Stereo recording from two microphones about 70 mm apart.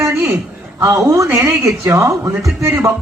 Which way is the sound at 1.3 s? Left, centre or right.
Right.